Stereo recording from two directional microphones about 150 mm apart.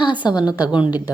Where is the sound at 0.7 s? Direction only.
5° right (ahead or behind).